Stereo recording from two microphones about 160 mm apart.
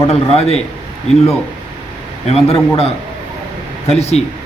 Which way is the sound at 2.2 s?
40° left (ahead or behind).